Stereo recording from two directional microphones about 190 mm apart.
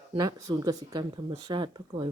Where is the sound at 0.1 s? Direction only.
20° right (ahead or behind).